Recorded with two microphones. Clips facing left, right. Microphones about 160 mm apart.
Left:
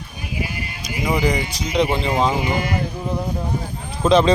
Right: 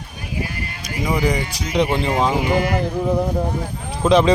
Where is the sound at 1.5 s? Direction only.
20° left (ahead or behind).